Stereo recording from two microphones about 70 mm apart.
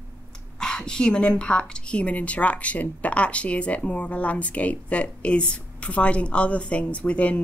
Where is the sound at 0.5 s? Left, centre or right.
Centre.